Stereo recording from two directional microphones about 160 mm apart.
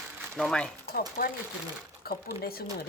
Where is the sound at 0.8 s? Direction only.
70° left (ahead or behind).